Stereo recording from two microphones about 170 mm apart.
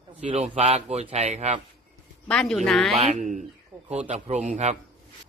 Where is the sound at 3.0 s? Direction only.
40° right (ahead or behind).